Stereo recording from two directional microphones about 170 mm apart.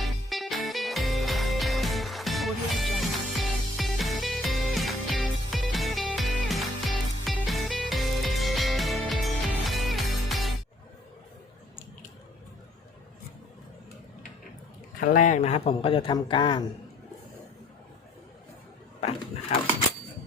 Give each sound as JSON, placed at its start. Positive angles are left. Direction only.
{"t": 0.0, "sound": "music", "side_deg": 0}
{"t": 15.0, "sound": "speech", "side_deg": 50}
{"t": 18.9, "sound": "a sound", "side_deg": 40}